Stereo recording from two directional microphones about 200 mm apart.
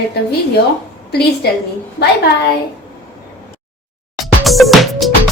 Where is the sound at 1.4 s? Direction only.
55° left (ahead or behind).